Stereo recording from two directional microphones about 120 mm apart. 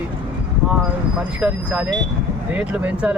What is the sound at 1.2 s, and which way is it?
Speech, 10° right (ahead or behind).